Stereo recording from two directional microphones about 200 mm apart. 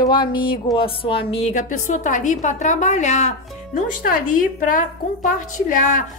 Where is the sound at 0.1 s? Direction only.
25° left (ahead or behind).